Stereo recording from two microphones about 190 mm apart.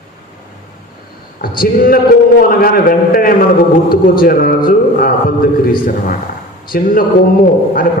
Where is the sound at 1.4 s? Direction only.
50° left (ahead or behind).